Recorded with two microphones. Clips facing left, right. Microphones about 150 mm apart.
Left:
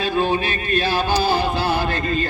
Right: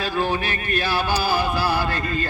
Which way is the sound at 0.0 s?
20° left (ahead or behind).